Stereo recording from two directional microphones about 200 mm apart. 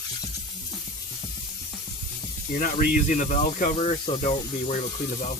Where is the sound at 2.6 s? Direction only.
40° left (ahead or behind).